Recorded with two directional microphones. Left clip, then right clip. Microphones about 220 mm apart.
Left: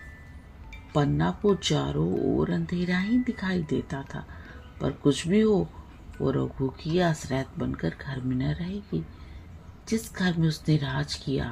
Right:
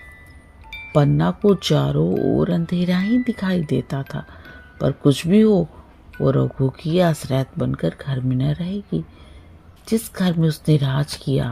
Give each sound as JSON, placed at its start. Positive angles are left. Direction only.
{"t": 0.9, "sound": "speech", "side_deg": -45}
{"t": 9.8, "sound": "speech", "side_deg": -45}